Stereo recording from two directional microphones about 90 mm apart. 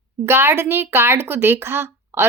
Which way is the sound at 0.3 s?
30° right (ahead or behind).